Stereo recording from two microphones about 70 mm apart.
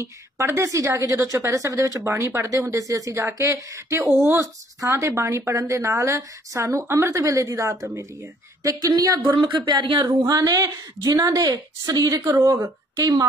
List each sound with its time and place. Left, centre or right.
0.0 s a woman's voice: right
4.2 s speech: right
4.7 s a woman's voice: right
8.8 s speech: right